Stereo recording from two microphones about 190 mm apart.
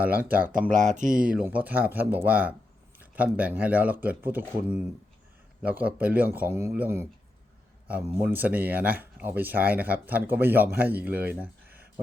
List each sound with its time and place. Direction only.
0.0 s speech: 10° right (ahead or behind)
0.7 s speech: 40° right (ahead or behind)
1.2 s speech: 5° right (ahead or behind)